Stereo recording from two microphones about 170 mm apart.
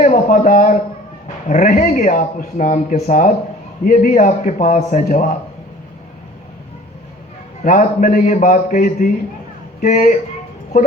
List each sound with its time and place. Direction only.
0.0 s speech: 50° left (ahead or behind)
7.6 s speech: 55° left (ahead or behind)